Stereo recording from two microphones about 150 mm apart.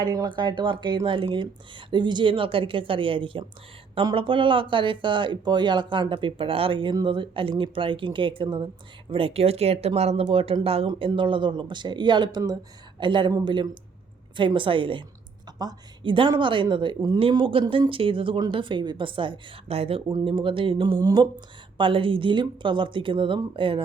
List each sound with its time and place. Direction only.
0.0 s a woman's voice: 25° right (ahead or behind)